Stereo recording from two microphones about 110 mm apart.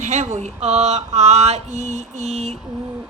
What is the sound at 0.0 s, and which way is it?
Speech, 90° right.